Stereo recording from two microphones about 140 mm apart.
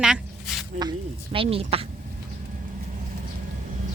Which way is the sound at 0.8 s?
35° right (ahead or behind).